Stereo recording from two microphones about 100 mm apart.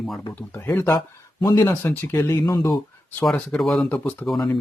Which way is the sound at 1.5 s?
25° left (ahead or behind).